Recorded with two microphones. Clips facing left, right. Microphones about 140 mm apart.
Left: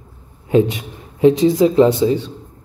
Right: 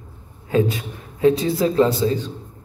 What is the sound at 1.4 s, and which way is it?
Speech, 20° left (ahead or behind).